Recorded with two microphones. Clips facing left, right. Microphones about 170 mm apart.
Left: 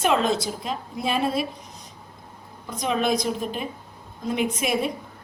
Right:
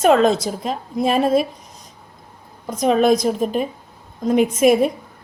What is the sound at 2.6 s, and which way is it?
A woman's voice, 45° right (ahead or behind).